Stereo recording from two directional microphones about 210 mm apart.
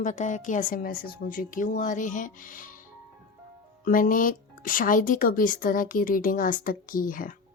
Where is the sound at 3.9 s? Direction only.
40° left (ahead or behind).